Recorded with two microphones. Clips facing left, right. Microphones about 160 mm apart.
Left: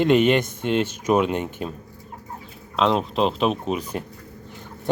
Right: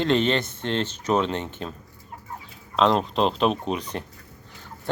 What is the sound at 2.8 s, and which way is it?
Speech, centre (ahead or behind).